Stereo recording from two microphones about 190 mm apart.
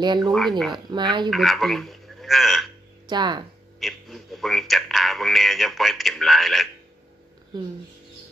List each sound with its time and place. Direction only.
0.0 s speech: 25° right (ahead or behind)
0.3 s speech: centre (ahead or behind)
3.1 s speech: 25° right (ahead or behind)
3.8 s a man's voice: centre (ahead or behind)